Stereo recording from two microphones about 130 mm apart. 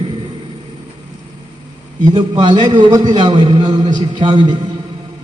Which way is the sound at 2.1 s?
50° right (ahead or behind).